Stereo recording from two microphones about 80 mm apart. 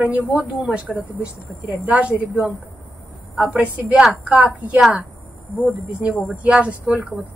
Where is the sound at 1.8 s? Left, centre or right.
Centre.